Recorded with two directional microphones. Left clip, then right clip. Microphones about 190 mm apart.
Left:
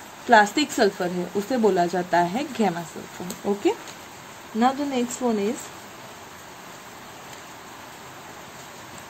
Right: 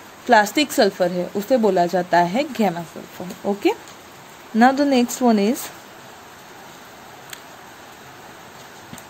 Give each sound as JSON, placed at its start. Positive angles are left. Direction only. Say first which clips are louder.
{"t": 0.3, "sound": "speech", "louder": "right 2 dB", "side_deg": -25}
{"t": 4.6, "sound": "speech", "louder": "right 7 dB", "side_deg": -55}